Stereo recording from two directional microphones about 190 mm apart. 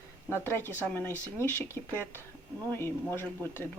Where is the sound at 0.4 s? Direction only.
10° left (ahead or behind).